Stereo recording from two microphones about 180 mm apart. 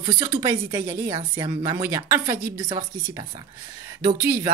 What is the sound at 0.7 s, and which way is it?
Speech, 15° right (ahead or behind).